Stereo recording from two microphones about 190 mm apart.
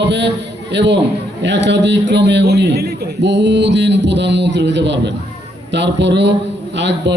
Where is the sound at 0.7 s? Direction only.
65° right (ahead or behind).